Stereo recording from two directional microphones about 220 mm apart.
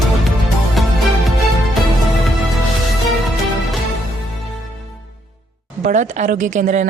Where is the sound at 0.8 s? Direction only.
Centre (ahead or behind).